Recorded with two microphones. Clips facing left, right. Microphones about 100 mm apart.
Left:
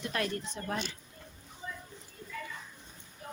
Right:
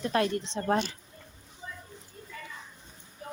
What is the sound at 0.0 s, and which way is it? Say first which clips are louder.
Music: right 7 dB; 30° right (ahead or behind).